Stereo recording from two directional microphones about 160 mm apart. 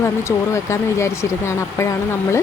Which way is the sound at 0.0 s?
15° left (ahead or behind).